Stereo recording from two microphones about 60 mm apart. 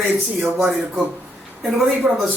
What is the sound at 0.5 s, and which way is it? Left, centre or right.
Speech, centre.